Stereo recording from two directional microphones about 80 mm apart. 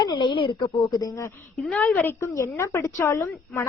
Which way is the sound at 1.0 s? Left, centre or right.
Left.